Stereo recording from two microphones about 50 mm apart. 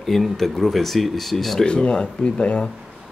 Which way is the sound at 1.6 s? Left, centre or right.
Centre.